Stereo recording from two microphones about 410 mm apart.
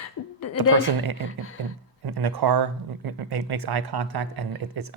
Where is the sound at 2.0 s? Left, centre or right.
Right.